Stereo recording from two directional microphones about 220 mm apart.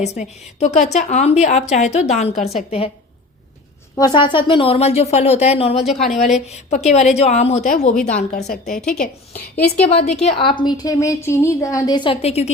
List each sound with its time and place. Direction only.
0.0 s a woman's voice: 30° left (ahead or behind)
3.9 s speech: 20° left (ahead or behind)
5.8 s a woman's voice: centre (ahead or behind)
6.1 s a woman's voice: 30° left (ahead or behind)
10.2 s speech: 25° left (ahead or behind)